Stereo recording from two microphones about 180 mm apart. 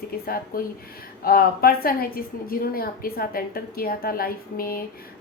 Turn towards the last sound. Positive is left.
turn(degrees=55)  # may be behind; listen again after turning